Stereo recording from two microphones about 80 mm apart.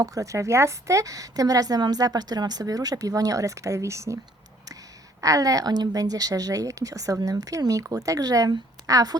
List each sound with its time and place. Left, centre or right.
0.0 s a woman's voice: right
5.2 s a woman's voice: right